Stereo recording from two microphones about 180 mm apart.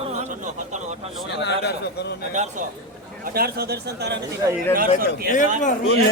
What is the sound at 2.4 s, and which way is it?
Speech, 40° right (ahead or behind).